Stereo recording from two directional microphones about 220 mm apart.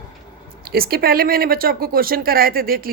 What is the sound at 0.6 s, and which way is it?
Speech, 45° right (ahead or behind).